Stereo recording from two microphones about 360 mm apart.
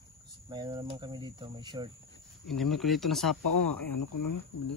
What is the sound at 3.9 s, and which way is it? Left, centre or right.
Speech, left.